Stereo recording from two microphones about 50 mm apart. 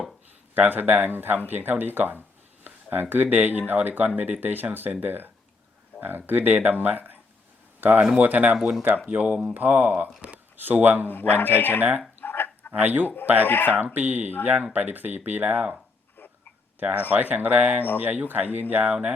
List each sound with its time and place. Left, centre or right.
0.5 s speech: right
9.0 s speech: right
11.1 s a man's voice: left
11.8 s speech: right
12.2 s a sound: left
12.7 s speech: right
13.5 s a man's voice: left
13.7 s speech: right
16.8 s speech: right